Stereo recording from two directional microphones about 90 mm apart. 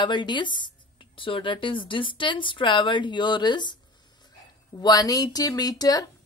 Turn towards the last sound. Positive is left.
turn(degrees=45)  # may be behind; listen again after turning